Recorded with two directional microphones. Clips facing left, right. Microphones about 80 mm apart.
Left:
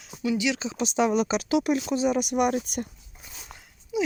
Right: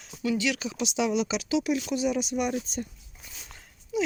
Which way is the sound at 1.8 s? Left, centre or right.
Left.